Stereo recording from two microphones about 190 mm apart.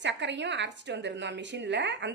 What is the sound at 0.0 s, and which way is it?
A woman's voice, 70° right (ahead or behind).